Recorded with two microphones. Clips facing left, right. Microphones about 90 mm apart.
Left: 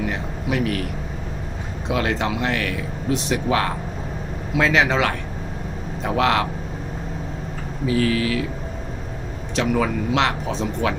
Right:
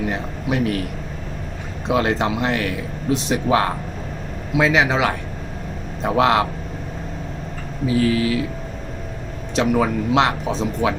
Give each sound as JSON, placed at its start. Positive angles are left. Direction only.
{"t": 1.9, "sound": "speech", "side_deg": -25}
{"t": 4.5, "sound": "speech", "side_deg": -10}
{"t": 7.9, "sound": "speech", "side_deg": -25}
{"t": 9.6, "sound": "speech", "side_deg": -20}